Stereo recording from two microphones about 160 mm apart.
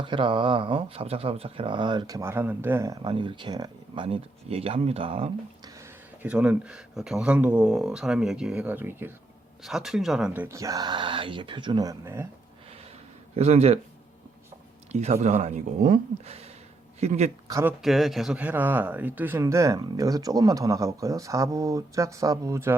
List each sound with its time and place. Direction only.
0.0 s speech: 30° right (ahead or behind)
5.6 s a sound: 20° right (ahead or behind)
6.2 s speech: 10° right (ahead or behind)
9.6 s speech: centre (ahead or behind)
13.3 s speech: 40° right (ahead or behind)
14.9 s speech: 45° right (ahead or behind)
17.5 s speech: 15° right (ahead or behind)
17.8 s speech: centre (ahead or behind); by 22.7 s 20° right (ahead or behind)